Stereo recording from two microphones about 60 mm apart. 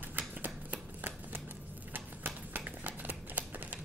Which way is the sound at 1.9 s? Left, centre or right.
Right.